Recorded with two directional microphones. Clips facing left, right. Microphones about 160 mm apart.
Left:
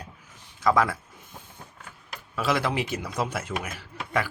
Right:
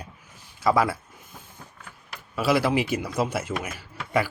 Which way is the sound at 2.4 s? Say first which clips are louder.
Right 4 dB; 10° right (ahead or behind).